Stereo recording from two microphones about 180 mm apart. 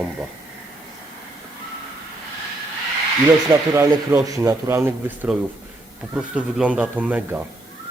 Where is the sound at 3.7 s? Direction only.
15° right (ahead or behind).